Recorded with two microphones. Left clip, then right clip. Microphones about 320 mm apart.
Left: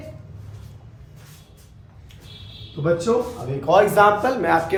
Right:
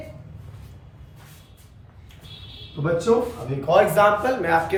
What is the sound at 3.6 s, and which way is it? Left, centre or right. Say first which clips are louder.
A man's voice: left 2 dB; centre.